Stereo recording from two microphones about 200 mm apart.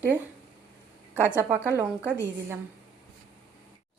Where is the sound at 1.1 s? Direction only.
10° right (ahead or behind).